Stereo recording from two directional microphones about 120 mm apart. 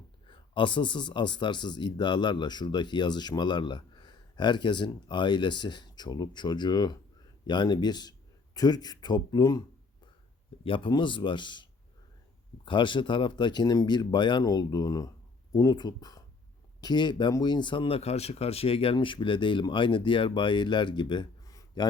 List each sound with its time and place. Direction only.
0.3 s speech: 40° left (ahead or behind)